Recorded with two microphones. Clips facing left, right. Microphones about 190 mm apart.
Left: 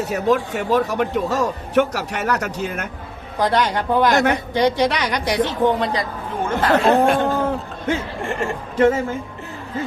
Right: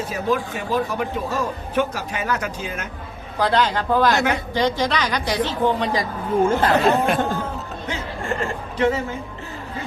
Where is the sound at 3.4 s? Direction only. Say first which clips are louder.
Left 1 dB; 15° left (ahead or behind).